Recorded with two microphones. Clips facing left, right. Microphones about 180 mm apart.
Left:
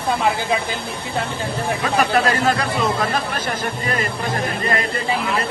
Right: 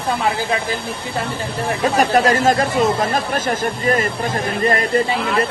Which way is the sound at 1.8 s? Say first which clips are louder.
Right 4 dB; 40° right (ahead or behind).